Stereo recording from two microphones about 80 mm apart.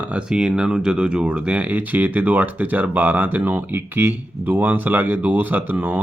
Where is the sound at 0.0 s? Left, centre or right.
Centre.